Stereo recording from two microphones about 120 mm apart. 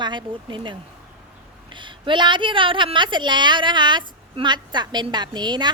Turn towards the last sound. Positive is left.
turn(degrees=-35)  # may be behind; listen again after turning